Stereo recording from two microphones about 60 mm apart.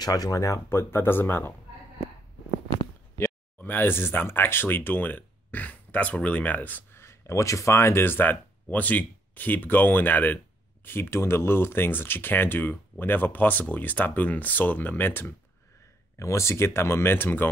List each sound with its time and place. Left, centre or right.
0.0 s speech: left
0.7 s speech: left
3.2 s speech: left
7.0 s speech: left
16.2 s speech: left